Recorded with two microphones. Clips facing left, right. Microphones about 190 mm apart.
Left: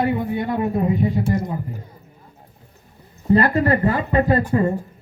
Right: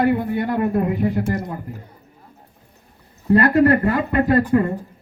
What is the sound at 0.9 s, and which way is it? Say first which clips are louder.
Speech: even; 60° right (ahead or behind).